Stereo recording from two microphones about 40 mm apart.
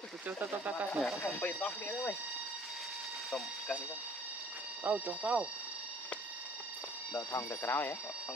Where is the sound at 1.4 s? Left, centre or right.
Left.